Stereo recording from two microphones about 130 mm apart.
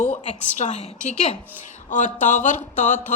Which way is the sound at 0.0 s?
65° left (ahead or behind).